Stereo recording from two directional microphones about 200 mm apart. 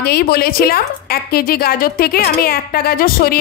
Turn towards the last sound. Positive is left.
turn(degrees=50)  # may be behind; listen again after turning